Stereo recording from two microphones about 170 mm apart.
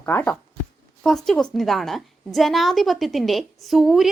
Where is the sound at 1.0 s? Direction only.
5° left (ahead or behind).